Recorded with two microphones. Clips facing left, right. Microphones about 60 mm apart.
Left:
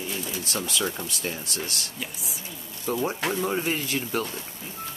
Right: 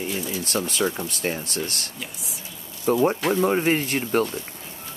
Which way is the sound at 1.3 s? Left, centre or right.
Right.